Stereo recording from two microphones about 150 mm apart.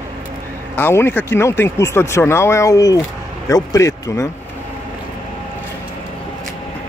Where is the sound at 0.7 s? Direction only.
15° left (ahead or behind).